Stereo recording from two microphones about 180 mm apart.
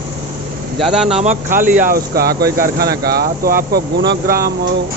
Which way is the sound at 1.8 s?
50° right (ahead or behind).